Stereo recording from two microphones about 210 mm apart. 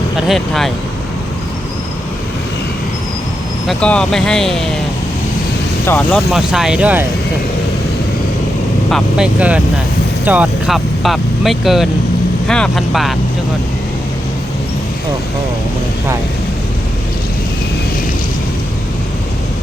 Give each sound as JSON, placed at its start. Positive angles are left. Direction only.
{"t": 0.2, "sound": "speech", "side_deg": 0}
{"t": 3.7, "sound": "speech", "side_deg": 5}
{"t": 5.8, "sound": "speech", "side_deg": 10}
{"t": 6.3, "sound": "speech", "side_deg": 0}
{"t": 8.9, "sound": "speech", "side_deg": 0}